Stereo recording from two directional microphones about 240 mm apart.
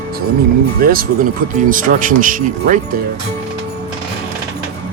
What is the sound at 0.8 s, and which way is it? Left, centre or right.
Speech, right.